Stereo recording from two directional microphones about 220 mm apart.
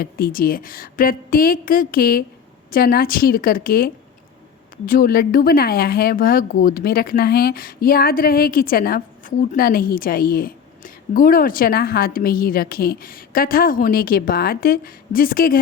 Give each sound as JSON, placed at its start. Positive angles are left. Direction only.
{"t": 0.0, "sound": "speech", "side_deg": 40}